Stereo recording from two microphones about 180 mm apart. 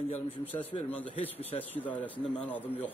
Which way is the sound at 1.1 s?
35° left (ahead or behind).